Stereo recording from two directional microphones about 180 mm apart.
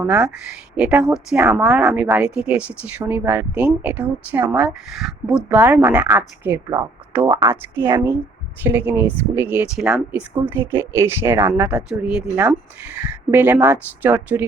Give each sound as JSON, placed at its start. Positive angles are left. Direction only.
{"t": 0.0, "sound": "speech", "side_deg": -10}
{"t": 13.3, "sound": "speech", "side_deg": -10}